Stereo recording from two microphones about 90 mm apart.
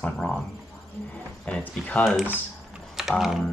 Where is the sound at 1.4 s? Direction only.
15° left (ahead or behind).